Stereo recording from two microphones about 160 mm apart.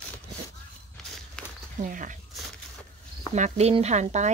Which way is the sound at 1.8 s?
55° right (ahead or behind).